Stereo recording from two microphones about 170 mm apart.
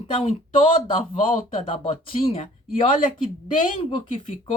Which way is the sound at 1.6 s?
35° left (ahead or behind).